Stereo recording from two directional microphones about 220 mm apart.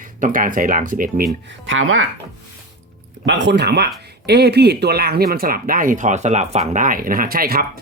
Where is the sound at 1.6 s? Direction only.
60° right (ahead or behind).